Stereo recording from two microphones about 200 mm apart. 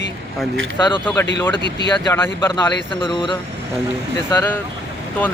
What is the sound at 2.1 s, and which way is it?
Speech, 10° left (ahead or behind).